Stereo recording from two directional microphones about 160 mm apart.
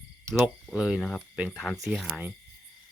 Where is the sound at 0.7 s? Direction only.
5° right (ahead or behind).